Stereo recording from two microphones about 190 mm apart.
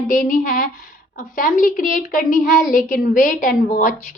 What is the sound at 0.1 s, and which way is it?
A woman's voice, 45° left (ahead or behind).